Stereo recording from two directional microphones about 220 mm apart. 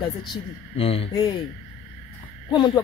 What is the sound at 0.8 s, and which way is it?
Speech, 25° left (ahead or behind).